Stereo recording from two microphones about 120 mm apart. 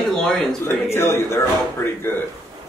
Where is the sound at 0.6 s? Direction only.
20° left (ahead or behind).